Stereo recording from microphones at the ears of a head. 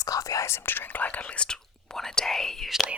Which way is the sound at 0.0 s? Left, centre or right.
Left.